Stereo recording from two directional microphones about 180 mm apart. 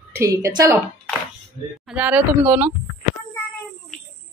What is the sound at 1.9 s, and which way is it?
Speech, 10° right (ahead or behind).